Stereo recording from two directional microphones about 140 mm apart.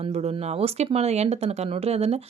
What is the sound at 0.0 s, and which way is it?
Speech, 50° right (ahead or behind).